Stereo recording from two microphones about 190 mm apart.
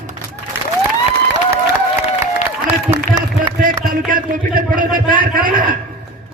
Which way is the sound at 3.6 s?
50° right (ahead or behind).